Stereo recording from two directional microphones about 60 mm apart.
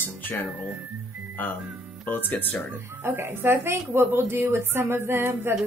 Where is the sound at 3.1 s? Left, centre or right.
Right.